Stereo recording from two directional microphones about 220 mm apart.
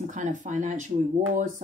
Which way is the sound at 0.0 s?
35° right (ahead or behind).